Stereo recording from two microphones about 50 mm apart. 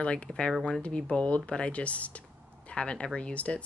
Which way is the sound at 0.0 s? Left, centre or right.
Left.